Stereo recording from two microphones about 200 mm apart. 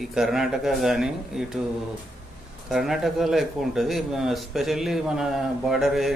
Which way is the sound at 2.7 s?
Centre (ahead or behind).